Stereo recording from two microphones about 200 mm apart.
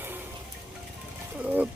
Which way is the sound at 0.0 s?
10° right (ahead or behind).